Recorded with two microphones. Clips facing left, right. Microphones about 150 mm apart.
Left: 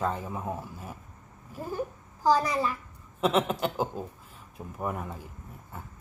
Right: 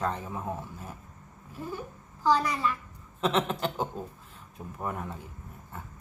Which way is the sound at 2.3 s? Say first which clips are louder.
Left 1 dB; 35° left (ahead or behind).